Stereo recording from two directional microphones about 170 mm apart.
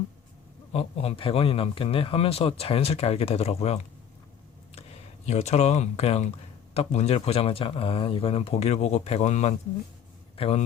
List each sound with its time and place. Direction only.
0.7 s a man's voice: 35° left (ahead or behind)